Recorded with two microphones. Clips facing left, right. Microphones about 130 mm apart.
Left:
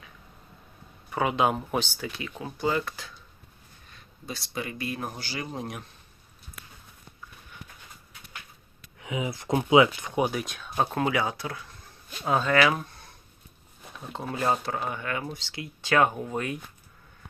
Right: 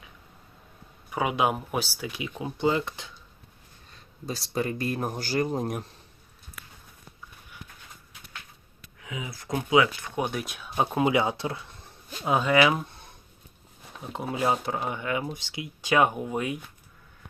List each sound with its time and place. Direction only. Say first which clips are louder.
1.1 s speech: left 1 dB; 10° right (ahead or behind)
2.4 s speech: right 2 dB; 20° right (ahead or behind)
4.3 s speech: right 5 dB; 40° right (ahead or behind)
9.0 s speech: left 6 dB; 25° left (ahead or behind); by 10.4 s 5° left (ahead or behind)
10.4 s speech: even; 10° right (ahead or behind)
11.1 s speech: right 3 dB; 20° right (ahead or behind)
14.1 s speech: right 1 dB; 15° right (ahead or behind)